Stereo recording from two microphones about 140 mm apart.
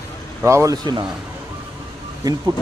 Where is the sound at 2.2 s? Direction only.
25° right (ahead or behind).